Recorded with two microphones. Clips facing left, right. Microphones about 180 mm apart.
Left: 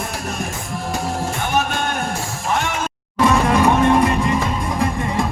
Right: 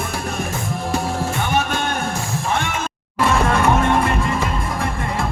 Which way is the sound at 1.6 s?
45° left (ahead or behind).